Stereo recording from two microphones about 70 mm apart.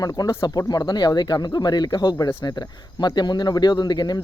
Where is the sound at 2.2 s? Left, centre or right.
Left.